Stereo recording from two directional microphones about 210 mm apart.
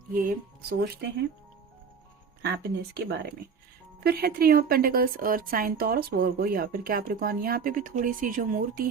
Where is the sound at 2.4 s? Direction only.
50° right (ahead or behind).